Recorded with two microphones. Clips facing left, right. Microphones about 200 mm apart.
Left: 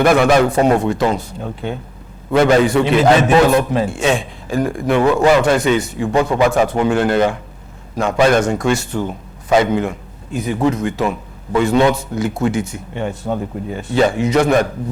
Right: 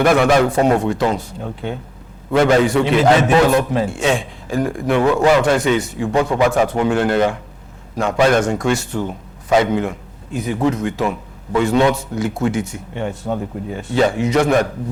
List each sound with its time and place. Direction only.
0.0 s a man's voice: 15° left (ahead or behind)
6.1 s a man's voice: 25° left (ahead or behind)